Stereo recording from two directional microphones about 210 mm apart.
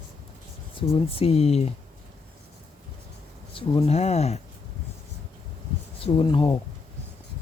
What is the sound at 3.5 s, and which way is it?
Speech, 30° left (ahead or behind).